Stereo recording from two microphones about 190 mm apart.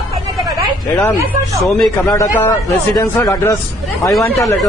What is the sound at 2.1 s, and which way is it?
A man's voice, 15° left (ahead or behind).